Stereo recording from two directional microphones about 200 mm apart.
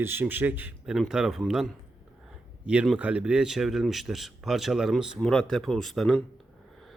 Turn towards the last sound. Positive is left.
turn(degrees=0)  # may be behind; listen again after turning